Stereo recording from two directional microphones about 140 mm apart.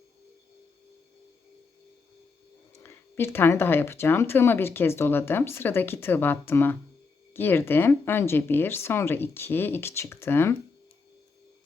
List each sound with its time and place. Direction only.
2.8 s speech: 20° left (ahead or behind)